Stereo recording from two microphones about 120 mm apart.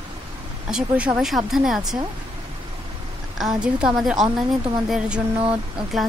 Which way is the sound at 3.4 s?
5° right (ahead or behind).